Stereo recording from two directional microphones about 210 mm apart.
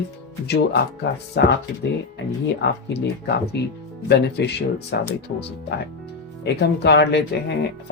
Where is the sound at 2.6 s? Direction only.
55° left (ahead or behind).